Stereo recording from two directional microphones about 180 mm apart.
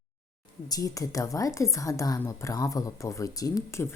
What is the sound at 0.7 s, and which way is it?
A woman's voice, 20° left (ahead or behind).